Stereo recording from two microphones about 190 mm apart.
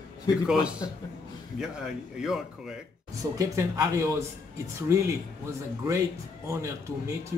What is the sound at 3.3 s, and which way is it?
Speech, 15° right (ahead or behind).